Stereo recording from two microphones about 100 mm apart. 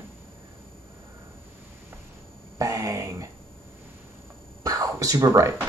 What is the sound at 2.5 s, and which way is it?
Throat clearing, 35° right (ahead or behind).